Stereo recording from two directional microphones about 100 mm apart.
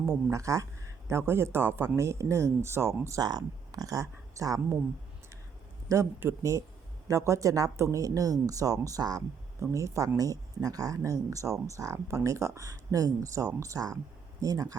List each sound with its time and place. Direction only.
0.3 s speech: 30° right (ahead or behind)
5.9 s speech: 25° right (ahead or behind)